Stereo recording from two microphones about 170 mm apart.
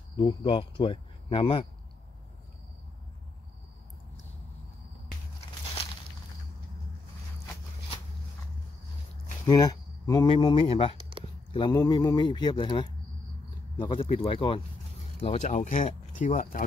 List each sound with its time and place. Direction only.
0.2 s speech: 25° left (ahead or behind)
9.5 s speech: 20° left (ahead or behind); by 16.6 s 50° left (ahead or behind)